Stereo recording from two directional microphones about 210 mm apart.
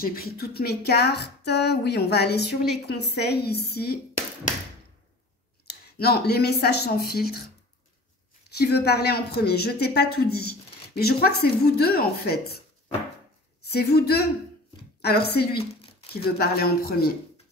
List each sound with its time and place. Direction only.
0.0 s speech: 45° left (ahead or behind)
5.9 s speech: 50° left (ahead or behind)
8.5 s speech: 50° left (ahead or behind)
13.7 s speech: 50° left (ahead or behind)
15.8 s a sound: 25° left (ahead or behind)
16.3 s speech: 45° left (ahead or behind)